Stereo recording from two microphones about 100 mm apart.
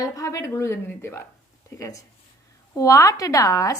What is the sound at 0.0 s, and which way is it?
Speech, 30° left (ahead or behind).